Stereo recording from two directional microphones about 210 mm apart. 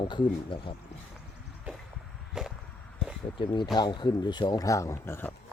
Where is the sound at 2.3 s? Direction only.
5° right (ahead or behind).